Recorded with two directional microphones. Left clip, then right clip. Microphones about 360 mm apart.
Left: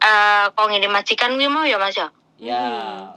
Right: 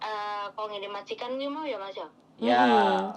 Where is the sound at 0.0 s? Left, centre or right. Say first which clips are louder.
Left 19 dB; left.